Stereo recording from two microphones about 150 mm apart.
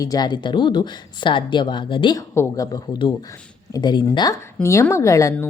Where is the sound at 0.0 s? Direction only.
25° left (ahead or behind).